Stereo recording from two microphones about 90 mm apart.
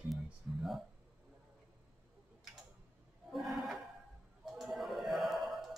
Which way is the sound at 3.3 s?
Centre (ahead or behind).